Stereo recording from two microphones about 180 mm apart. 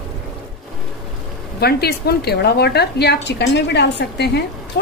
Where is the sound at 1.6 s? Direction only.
60° left (ahead or behind).